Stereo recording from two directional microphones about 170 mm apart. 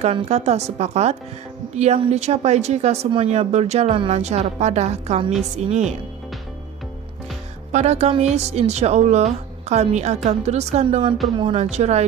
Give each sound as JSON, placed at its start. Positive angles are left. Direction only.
{"t": 0.0, "sound": "speech", "side_deg": -35}
{"t": 7.7, "sound": "speech", "side_deg": -40}